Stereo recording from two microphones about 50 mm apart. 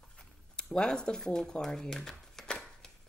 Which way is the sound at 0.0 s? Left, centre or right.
Centre.